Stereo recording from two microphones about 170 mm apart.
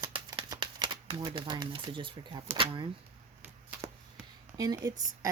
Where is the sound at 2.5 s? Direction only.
30° right (ahead or behind).